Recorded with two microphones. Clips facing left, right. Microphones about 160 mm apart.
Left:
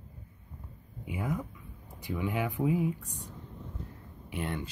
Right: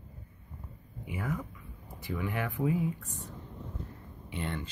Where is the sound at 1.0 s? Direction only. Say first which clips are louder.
Left 2 dB; 15° left (ahead or behind).